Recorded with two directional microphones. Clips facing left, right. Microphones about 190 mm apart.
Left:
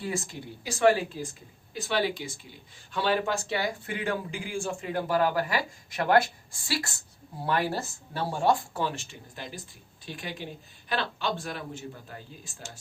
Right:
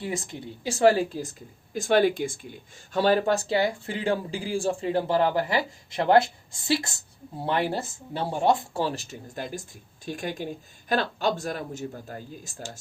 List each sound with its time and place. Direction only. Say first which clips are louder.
0.0 s speech: right 1 dB; 20° right (ahead or behind); by 12.8 s 40° right (ahead or behind)